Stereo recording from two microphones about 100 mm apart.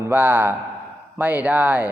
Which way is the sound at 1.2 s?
15° right (ahead or behind).